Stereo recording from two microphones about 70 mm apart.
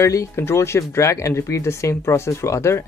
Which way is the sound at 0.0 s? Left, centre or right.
Left.